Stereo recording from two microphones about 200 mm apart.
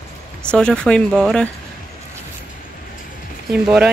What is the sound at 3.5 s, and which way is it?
Speech, 5° right (ahead or behind).